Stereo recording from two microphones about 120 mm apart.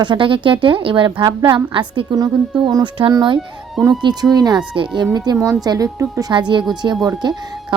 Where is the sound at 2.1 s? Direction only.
35° right (ahead or behind).